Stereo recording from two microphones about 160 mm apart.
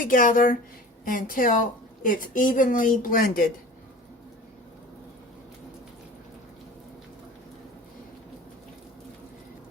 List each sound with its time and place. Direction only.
0.0 s speech: 55° left (ahead or behind)